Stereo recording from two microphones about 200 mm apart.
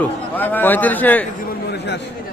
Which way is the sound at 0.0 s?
10° left (ahead or behind).